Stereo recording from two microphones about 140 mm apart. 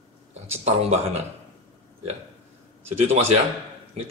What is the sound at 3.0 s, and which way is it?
Speech, 50° right (ahead or behind).